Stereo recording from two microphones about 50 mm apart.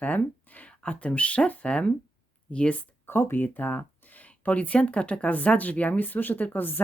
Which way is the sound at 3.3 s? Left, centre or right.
Left.